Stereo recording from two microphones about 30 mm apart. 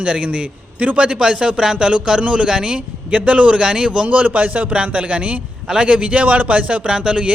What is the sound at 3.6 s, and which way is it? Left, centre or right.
Speech, right.